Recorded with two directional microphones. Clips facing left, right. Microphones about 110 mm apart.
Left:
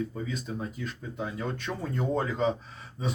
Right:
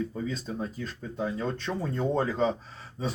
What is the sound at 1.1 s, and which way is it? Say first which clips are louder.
Speech: right 4 dB; 30° right (ahead or behind).